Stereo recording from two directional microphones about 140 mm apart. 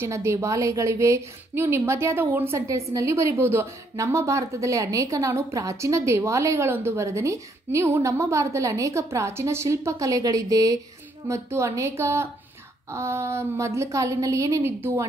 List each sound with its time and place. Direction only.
0.0 s a woman's voice: 20° right (ahead or behind)